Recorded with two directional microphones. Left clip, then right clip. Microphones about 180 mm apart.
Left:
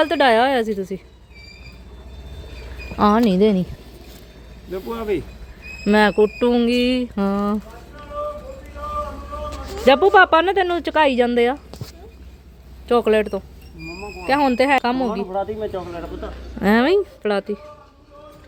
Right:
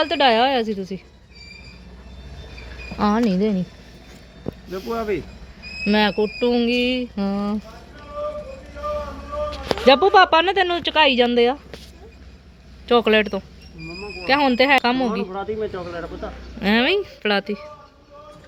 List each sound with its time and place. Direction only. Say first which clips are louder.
0.0 s speech: left 1 dB; 20° left (ahead or behind)
3.0 s speech: left 4 dB; 20° left (ahead or behind)
3.3 s a woman's voice: left 6 dB; 35° left (ahead or behind)
4.7 s speech: left 1 dB; 30° left (ahead or behind)
9.8 s speech: left 1 dB; 10° left (ahead or behind)
12.9 s speech: even; 5° left (ahead or behind)
15.3 s speech: left 2 dB; 65° left (ahead or behind)
16.2 s a woman's voice: left 4 dB; 35° left (ahead or behind)
17.2 s speech: even; 10° left (ahead or behind)